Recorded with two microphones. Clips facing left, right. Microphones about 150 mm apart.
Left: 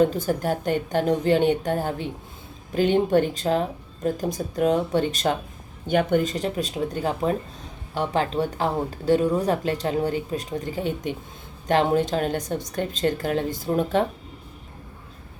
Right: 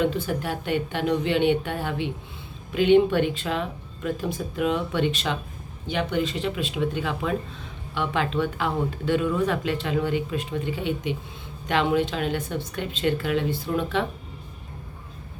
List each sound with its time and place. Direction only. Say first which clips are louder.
0.0 s speech: left 4 dB; 40° left (ahead or behind)